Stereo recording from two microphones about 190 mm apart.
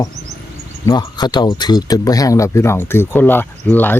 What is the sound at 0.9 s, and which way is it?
Speech, 20° left (ahead or behind).